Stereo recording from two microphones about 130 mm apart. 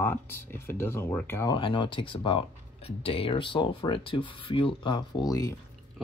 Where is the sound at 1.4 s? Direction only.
40° left (ahead or behind).